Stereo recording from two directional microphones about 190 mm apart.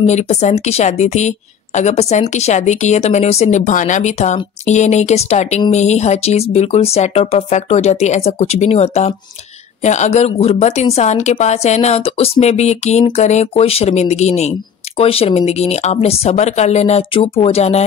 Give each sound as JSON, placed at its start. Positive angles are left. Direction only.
{"t": 0.0, "sound": "a woman's voice", "side_deg": 35}